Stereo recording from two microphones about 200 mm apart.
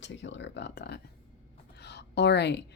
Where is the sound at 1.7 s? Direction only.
55° left (ahead or behind).